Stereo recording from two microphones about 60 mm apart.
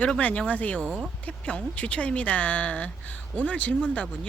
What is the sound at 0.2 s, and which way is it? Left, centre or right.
Speech, left.